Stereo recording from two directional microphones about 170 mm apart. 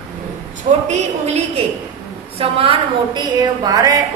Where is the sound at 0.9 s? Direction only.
40° right (ahead or behind).